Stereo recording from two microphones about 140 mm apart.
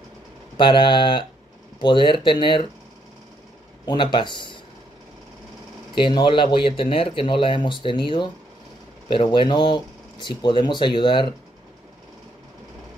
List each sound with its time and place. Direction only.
0.6 s speech: 35° left (ahead or behind)
3.8 s speech: 35° left (ahead or behind)
5.9 s speech: 35° left (ahead or behind)